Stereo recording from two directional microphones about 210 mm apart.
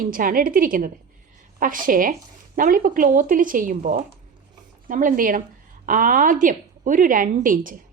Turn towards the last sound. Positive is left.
turn(degrees=-40)  # may be behind; listen again after turning